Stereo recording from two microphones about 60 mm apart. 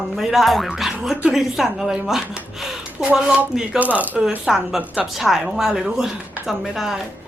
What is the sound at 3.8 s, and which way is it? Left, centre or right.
Speech, right.